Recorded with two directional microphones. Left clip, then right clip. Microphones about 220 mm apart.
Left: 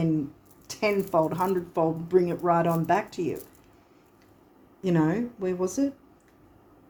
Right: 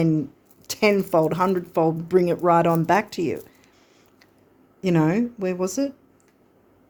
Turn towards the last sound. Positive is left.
turn(degrees=-50)  # may be behind; listen again after turning